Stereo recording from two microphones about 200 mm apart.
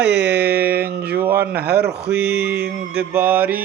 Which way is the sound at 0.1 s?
55° right (ahead or behind).